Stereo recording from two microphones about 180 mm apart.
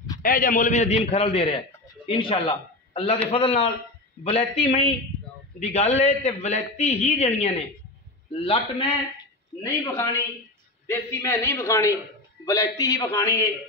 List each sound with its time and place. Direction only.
0.2 s a man's voice: 50° left (ahead or behind); by 8.8 s 30° left (ahead or behind)
10.9 s a man's voice: 15° left (ahead or behind)